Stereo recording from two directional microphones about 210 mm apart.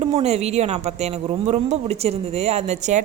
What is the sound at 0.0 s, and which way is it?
A woman's voice, 30° right (ahead or behind).